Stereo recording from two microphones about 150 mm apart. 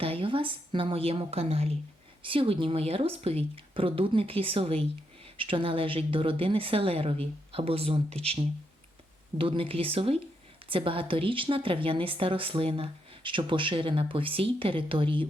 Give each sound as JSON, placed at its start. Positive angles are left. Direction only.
{"t": 0.0, "sound": "speech", "side_deg": -35}